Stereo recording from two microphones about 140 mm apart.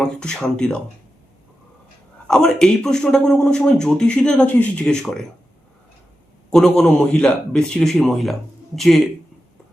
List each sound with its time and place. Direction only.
0.0 s speech: 5° left (ahead or behind)
2.2 s speech: 5° left (ahead or behind)
6.5 s speech: 5° left (ahead or behind)